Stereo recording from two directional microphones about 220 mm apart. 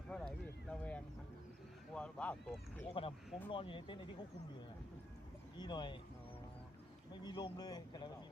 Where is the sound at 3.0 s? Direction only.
25° left (ahead or behind).